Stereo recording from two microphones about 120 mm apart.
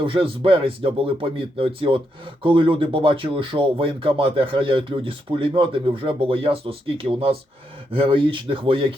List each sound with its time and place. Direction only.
0.0 s speech: 45° right (ahead or behind)